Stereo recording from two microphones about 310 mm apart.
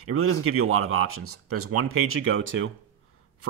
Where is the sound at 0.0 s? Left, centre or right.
Right.